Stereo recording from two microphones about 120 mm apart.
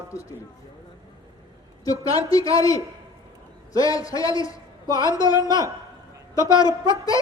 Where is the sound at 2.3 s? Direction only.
30° left (ahead or behind).